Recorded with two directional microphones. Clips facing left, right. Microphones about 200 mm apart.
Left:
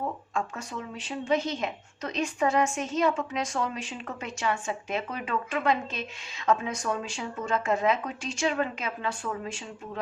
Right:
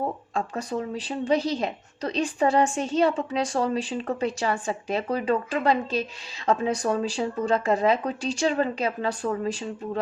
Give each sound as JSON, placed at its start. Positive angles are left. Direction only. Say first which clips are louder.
{"t": 0.3, "sound": "a woman's voice", "louder": "right 8 dB", "side_deg": -35}